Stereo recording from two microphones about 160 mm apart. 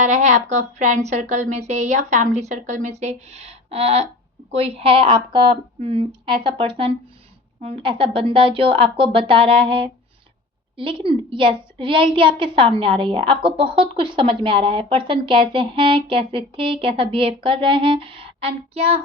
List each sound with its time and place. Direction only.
0.0 s a woman's voice: 45° right (ahead or behind)